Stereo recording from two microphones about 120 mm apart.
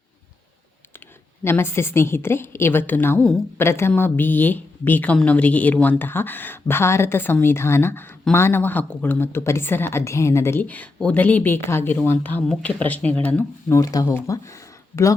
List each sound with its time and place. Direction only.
1.5 s a woman's voice: 20° left (ahead or behind)
13.7 s a woman's voice: 25° left (ahead or behind)